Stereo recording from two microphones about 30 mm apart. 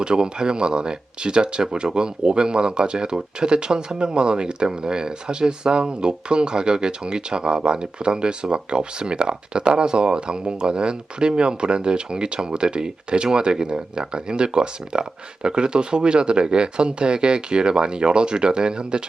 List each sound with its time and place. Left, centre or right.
0.0 s speech: right